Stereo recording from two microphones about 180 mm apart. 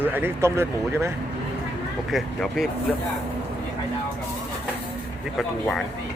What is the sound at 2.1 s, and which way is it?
Speech, centre (ahead or behind).